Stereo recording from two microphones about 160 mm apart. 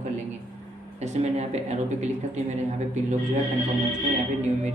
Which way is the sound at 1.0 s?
45° right (ahead or behind).